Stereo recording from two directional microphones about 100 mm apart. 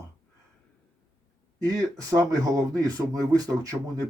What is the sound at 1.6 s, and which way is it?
Speech, 35° right (ahead or behind).